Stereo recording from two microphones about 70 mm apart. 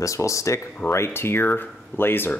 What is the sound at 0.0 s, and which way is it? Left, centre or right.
Speech, left.